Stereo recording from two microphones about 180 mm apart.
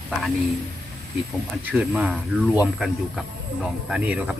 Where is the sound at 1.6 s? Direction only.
10° right (ahead or behind).